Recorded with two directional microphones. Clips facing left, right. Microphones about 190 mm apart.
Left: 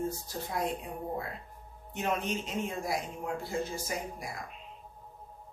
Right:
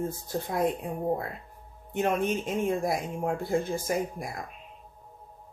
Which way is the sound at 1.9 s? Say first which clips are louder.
Right 6 dB; 50° right (ahead or behind).